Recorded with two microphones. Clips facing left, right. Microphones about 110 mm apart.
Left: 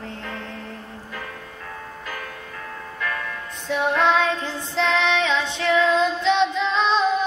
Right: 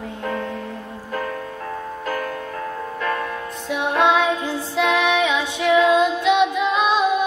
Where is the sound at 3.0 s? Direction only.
40° right (ahead or behind).